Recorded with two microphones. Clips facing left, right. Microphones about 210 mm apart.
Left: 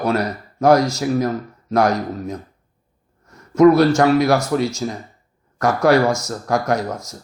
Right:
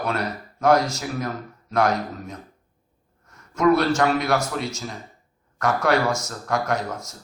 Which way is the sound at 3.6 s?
40° left (ahead or behind).